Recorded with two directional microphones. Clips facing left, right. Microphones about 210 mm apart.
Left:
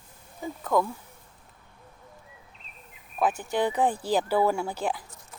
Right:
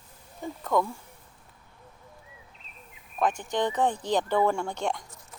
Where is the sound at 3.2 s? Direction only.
5° left (ahead or behind).